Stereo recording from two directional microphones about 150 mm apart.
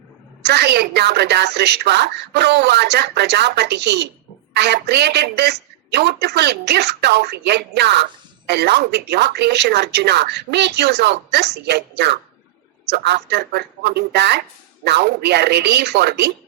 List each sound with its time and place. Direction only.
0.4 s speech: 90° right